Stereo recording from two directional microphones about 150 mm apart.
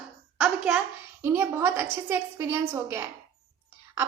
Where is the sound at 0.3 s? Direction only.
5° right (ahead or behind).